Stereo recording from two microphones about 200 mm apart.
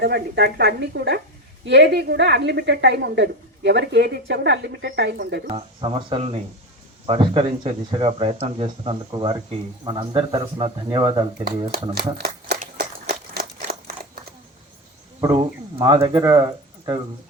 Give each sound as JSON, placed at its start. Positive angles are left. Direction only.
{"t": 0.0, "sound": "a woman's voice", "side_deg": -55}
{"t": 5.5, "sound": "speech", "side_deg": -25}
{"t": 11.9, "sound": "speech", "side_deg": -55}
{"t": 15.2, "sound": "speech", "side_deg": -20}